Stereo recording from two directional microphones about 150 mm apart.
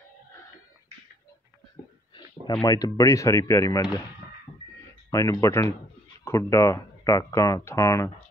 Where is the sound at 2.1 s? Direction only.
30° left (ahead or behind).